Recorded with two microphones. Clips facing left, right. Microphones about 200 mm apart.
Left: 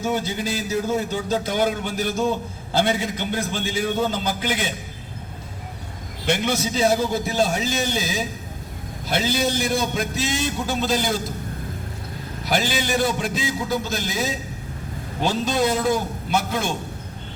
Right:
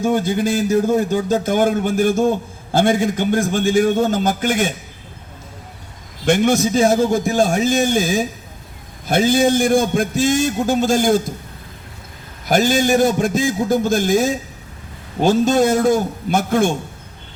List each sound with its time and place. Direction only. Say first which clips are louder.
0.0 s a man's voice: right 7 dB; 50° right (ahead or behind)
6.2 s a man's voice: right 8 dB; 50° right (ahead or behind)
12.5 s a man's voice: right 8 dB; 45° right (ahead or behind)